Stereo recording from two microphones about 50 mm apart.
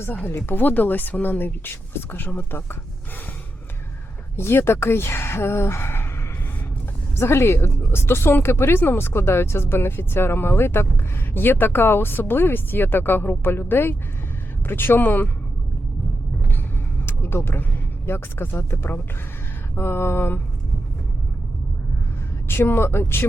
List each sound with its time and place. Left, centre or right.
0.3 s speech: left
4.4 s speech: left
7.2 s speech: left
7.8 s speech: left
17.2 s speech: left
22.4 s speech: left